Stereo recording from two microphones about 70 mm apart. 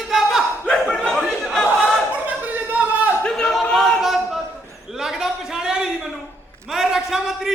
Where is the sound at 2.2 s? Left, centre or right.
Right.